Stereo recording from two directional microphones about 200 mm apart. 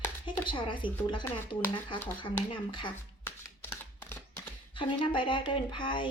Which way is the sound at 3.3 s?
10° left (ahead or behind).